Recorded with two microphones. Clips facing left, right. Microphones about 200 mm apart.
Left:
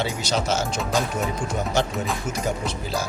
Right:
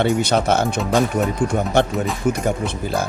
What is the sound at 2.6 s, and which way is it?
Speech, 55° right (ahead or behind).